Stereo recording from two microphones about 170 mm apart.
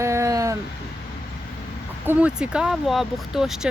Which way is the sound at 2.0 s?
5° right (ahead or behind).